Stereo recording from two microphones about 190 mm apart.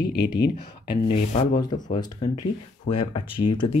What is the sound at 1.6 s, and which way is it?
Speech, 20° left (ahead or behind).